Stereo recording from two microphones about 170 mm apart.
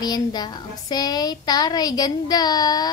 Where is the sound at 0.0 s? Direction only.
25° left (ahead or behind).